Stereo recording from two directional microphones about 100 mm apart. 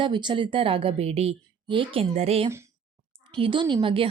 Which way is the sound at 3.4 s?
55° right (ahead or behind).